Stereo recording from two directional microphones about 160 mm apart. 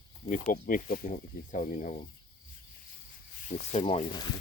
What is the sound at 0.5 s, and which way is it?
Speech, 65° left (ahead or behind).